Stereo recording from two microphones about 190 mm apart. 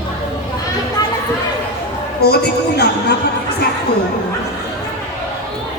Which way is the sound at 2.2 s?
55° left (ahead or behind).